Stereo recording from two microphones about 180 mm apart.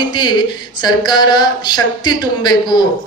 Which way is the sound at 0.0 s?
25° left (ahead or behind).